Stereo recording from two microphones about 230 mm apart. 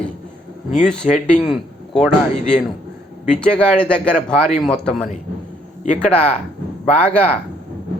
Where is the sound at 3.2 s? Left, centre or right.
Centre.